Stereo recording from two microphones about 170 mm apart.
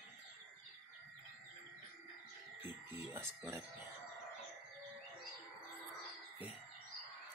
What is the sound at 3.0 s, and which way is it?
Speech, 15° right (ahead or behind).